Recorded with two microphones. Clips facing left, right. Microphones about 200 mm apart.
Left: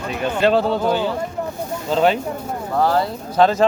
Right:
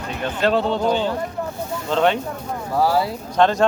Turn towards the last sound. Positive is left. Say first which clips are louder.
# left 2 dB
turn(degrees=5)  # may be behind; listen again after turning